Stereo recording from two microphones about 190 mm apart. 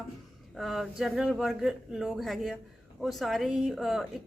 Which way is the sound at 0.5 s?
Centre (ahead or behind).